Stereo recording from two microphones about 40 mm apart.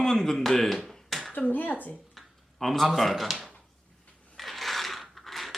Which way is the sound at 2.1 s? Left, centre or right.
Centre.